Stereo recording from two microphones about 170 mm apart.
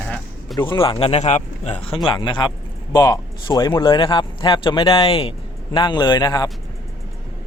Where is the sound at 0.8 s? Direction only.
35° left (ahead or behind).